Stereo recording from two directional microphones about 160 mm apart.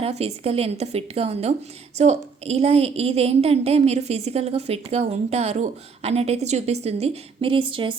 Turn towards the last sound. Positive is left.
turn(degrees=-30)  # may be behind; listen again after turning